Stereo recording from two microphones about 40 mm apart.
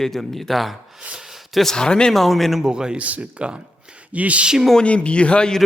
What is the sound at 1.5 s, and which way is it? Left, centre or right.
Speech, centre.